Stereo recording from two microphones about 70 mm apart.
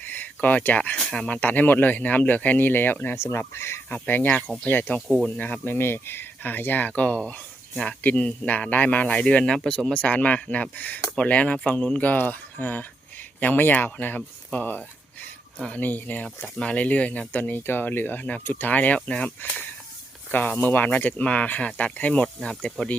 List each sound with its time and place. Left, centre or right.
0.0 s a sound: left
0.9 s speech: centre; by 3.2 s left
3.2 s speech: left
3.8 s speech: left
20.6 s speech: left
22.4 s speech: centre